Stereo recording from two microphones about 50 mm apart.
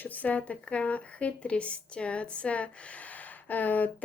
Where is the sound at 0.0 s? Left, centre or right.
Left.